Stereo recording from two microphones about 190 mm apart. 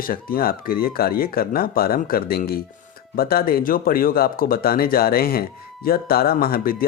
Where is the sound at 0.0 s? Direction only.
50° left (ahead or behind).